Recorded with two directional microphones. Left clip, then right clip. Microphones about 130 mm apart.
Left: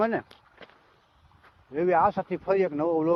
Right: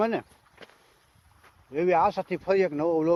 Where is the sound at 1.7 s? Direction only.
30° right (ahead or behind).